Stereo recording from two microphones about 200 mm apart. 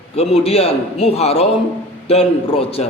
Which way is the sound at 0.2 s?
30° left (ahead or behind).